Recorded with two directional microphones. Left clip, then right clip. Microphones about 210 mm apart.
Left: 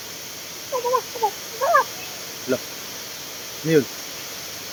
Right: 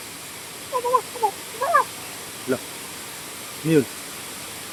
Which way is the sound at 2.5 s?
Centre (ahead or behind).